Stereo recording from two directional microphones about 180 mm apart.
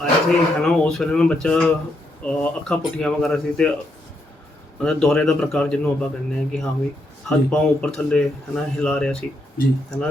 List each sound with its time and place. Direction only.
0.0 s a man's voice: centre (ahead or behind)
4.8 s a man's voice: 5° left (ahead or behind)